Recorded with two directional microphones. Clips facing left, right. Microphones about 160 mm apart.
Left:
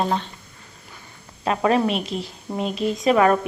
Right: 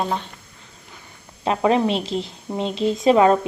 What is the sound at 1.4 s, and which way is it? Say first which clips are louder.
A woman's voice: right 1 dB; 20° right (ahead or behind).